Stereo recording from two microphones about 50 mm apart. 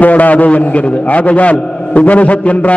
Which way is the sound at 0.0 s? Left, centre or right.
Left.